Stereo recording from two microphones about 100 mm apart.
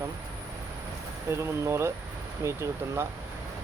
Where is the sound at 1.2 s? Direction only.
30° right (ahead or behind).